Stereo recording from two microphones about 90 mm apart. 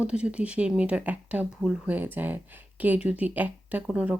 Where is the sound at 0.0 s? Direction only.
15° right (ahead or behind).